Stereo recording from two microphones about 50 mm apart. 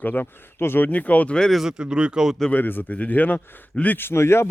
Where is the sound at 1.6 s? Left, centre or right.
Centre.